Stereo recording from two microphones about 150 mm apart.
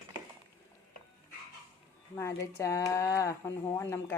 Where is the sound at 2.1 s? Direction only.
20° left (ahead or behind).